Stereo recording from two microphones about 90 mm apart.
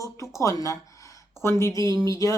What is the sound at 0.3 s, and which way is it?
Speech, 35° left (ahead or behind).